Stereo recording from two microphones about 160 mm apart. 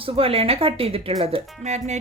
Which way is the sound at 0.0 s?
35° right (ahead or behind).